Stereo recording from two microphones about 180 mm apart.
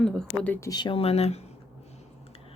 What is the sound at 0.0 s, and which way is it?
Speech, 5° left (ahead or behind).